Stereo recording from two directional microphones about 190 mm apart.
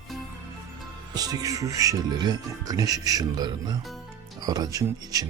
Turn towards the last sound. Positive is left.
turn(degrees=-20)  # may be behind; listen again after turning